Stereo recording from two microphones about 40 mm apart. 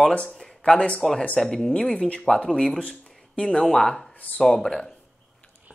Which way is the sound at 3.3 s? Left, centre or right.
Left.